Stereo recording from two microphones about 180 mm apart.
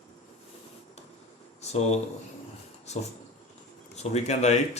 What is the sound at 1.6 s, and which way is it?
Speech, 35° left (ahead or behind).